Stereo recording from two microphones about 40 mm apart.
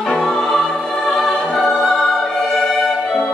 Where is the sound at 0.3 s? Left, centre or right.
Centre.